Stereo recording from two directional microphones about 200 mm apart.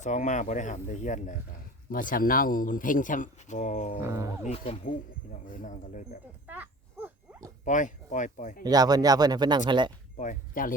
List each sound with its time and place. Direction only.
0.0 s speech: 35° left (ahead or behind)
4.0 s speech: 15° right (ahead or behind)
4.4 s speech: 30° left (ahead or behind)
5.5 s speech: 40° left (ahead or behind)
6.5 s a sound: 10° right (ahead or behind)
7.6 s speech: 40° left (ahead or behind)
8.6 s speech: 20° right (ahead or behind)
10.2 s speech: 40° left (ahead or behind)